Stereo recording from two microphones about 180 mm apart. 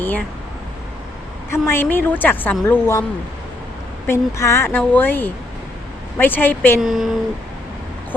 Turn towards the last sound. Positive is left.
turn(degrees=0)  # may be behind; listen again after turning